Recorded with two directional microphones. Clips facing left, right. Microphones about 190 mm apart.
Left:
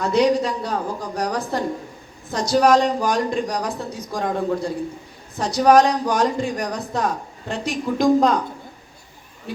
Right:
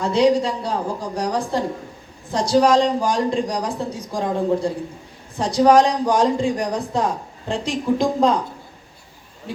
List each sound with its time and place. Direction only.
0.0 s a man's voice: 30° right (ahead or behind)